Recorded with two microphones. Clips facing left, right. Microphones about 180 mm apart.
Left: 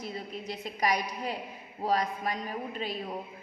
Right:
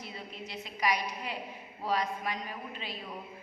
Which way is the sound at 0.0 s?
40° left (ahead or behind).